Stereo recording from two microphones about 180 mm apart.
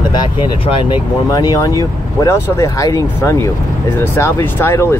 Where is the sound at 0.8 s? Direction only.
20° left (ahead or behind).